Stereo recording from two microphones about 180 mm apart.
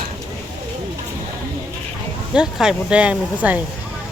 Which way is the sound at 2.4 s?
5° right (ahead or behind).